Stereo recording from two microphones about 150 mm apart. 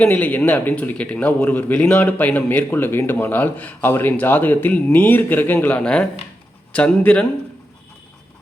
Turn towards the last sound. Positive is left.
turn(degrees=10)  # may be behind; listen again after turning